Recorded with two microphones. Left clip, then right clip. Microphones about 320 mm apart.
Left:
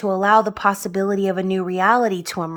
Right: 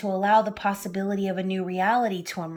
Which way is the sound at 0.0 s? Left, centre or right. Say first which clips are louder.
Left 5 dB; centre.